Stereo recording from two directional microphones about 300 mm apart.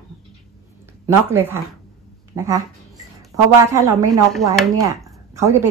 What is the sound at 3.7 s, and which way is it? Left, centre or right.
A woman's voice, centre.